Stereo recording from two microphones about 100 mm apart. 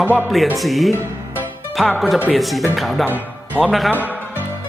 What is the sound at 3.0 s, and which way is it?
Music, 20° right (ahead or behind).